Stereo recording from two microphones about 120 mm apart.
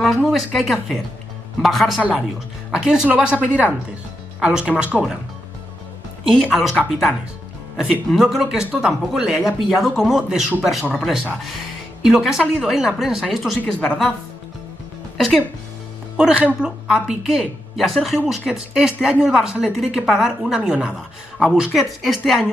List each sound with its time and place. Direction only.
0.0 s speech: centre (ahead or behind)
6.2 s speech: centre (ahead or behind)
7.7 s a woman's voice: centre (ahead or behind)
15.1 s speech: 5° left (ahead or behind)
16.2 s speech: 10° right (ahead or behind)